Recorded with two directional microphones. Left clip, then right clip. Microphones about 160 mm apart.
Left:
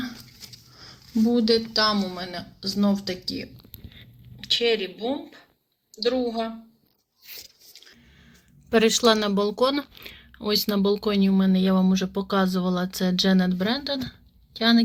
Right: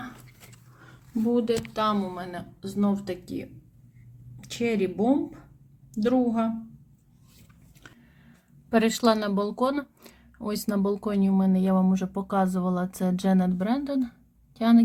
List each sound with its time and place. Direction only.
1.3 s speech: 20° left (ahead or behind)
1.9 s speech: 5° left (ahead or behind)
4.4 s speech: 10° right (ahead or behind)
5.0 s speech: 5° left (ahead or behind)
8.7 s a woman's voice: centre (ahead or behind)